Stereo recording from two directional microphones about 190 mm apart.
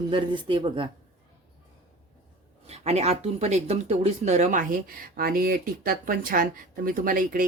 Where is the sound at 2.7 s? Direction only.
35° right (ahead or behind).